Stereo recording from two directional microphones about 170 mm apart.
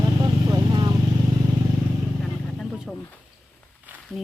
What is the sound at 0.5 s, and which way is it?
Vehicle, 25° right (ahead or behind).